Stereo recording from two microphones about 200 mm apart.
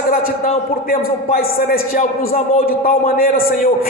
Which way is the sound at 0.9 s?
45° left (ahead or behind).